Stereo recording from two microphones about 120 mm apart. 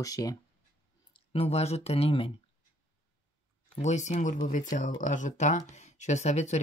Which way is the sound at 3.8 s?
80° left.